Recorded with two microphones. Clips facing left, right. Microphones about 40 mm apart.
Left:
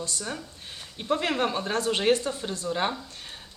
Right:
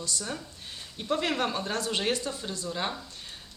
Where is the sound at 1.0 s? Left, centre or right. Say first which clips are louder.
Left 2 dB; left.